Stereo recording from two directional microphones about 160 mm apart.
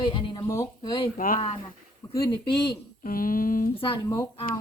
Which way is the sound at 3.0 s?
60° left (ahead or behind).